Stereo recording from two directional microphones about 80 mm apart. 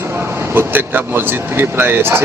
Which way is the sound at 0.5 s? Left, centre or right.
Right.